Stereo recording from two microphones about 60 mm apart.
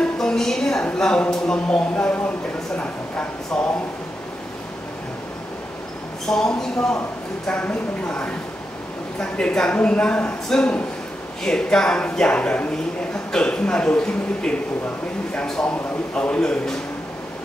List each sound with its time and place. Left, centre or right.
0.0 s a sound: centre
1.3 s speech: centre
2.8 s a sound: left
6.2 s a man's voice: centre
7.6 s a man's voice: left
16.2 s a man's voice: centre